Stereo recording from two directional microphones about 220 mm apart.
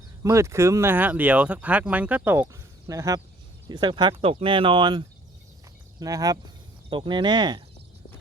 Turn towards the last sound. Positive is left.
turn(degrees=-20)  # may be behind; listen again after turning